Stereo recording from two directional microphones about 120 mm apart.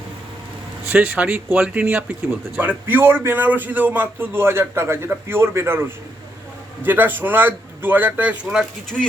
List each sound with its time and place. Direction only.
0.9 s a man's voice: 15° right (ahead or behind)
6.8 s a man's voice: 15° right (ahead or behind)